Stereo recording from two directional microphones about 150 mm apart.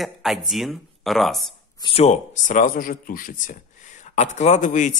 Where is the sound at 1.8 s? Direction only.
40° left (ahead or behind); by 3.6 s 65° left (ahead or behind).